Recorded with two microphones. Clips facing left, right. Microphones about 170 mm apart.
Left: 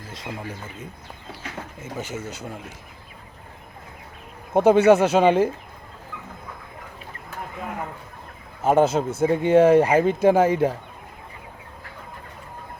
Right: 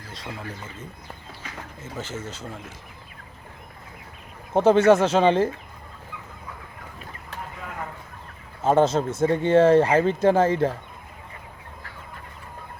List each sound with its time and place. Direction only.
0.1 s speech: 20° left (ahead or behind)
4.5 s speech: 10° left (ahead or behind)
8.6 s speech: 10° left (ahead or behind)